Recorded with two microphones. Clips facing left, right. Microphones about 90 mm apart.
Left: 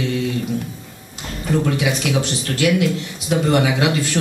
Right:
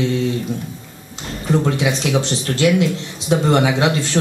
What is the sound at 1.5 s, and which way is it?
Speech, 25° right (ahead or behind).